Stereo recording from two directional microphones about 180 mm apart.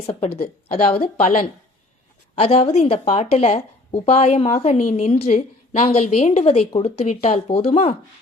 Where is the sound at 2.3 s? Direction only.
35° left (ahead or behind).